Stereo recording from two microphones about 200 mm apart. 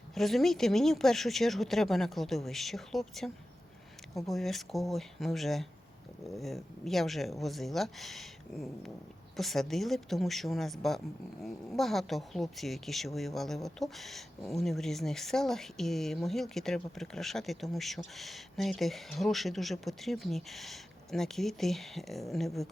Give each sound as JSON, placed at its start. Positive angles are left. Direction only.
{"t": 0.1, "sound": "speech", "side_deg": 0}